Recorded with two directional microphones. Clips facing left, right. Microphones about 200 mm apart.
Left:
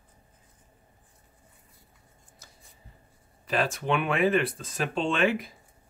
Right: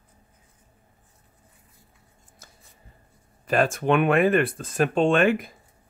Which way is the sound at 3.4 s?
50° right (ahead or behind).